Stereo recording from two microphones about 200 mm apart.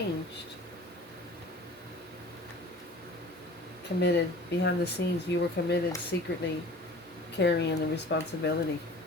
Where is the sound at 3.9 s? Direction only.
60° left (ahead or behind).